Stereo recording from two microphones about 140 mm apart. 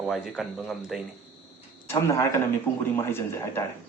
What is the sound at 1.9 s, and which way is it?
Speech, 20° left (ahead or behind).